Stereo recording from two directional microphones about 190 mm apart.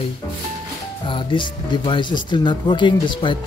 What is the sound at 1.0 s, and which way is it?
Speech, 25° left (ahead or behind).